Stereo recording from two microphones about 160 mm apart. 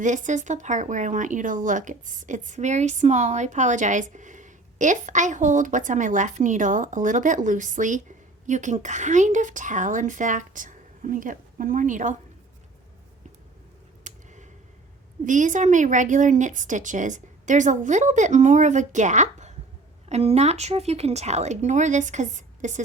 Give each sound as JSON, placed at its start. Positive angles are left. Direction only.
{"t": 0.0, "sound": "speech", "side_deg": -50}
{"t": 14.0, "sound": "a sound", "side_deg": -50}
{"t": 15.2, "sound": "speech", "side_deg": -50}